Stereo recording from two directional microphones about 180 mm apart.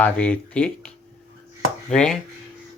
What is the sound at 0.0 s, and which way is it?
Speech, 5° left (ahead or behind).